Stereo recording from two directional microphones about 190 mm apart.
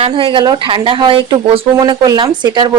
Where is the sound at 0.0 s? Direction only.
30° right (ahead or behind).